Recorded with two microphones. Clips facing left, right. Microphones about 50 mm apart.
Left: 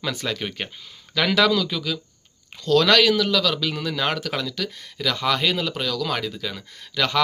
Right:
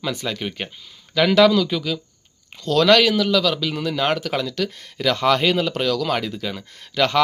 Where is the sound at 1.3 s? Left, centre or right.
Centre.